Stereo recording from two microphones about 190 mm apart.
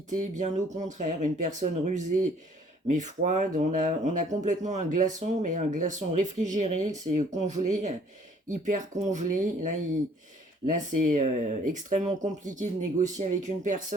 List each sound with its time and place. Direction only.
0.1 s speech: 40° right (ahead or behind)
10.8 s speech: 40° right (ahead or behind)